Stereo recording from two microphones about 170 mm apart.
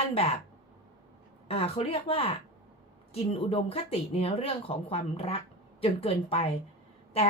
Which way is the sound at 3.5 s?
35° left (ahead or behind).